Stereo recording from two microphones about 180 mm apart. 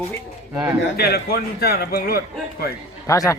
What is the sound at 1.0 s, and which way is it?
A man's voice, 60° left (ahead or behind).